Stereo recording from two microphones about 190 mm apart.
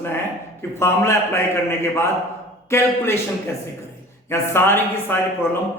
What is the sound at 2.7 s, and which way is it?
Speech, 15° left (ahead or behind).